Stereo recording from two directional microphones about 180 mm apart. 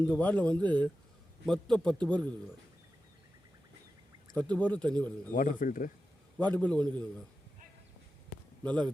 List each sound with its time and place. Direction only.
0.0 s a man's voice: 10° left (ahead or behind)
4.4 s speech: 5° left (ahead or behind)
5.3 s speech: 50° left (ahead or behind)
6.5 s speech: 5° left (ahead or behind)
8.6 s speech: 5° left (ahead or behind)